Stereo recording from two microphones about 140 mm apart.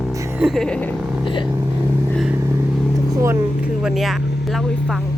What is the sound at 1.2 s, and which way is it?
Vehicle, 35° left (ahead or behind).